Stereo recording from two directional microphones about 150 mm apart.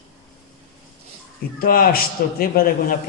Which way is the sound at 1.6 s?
75° left (ahead or behind).